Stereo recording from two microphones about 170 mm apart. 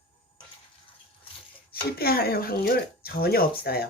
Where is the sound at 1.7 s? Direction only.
65° left (ahead or behind).